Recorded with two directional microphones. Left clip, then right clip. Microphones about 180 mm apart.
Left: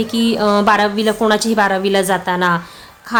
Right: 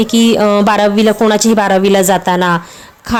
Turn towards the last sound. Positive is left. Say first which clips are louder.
# even
turn(degrees=-40)  # may be behind; listen again after turning